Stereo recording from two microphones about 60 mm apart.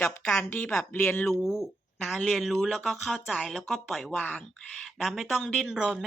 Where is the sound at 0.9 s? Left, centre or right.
Left.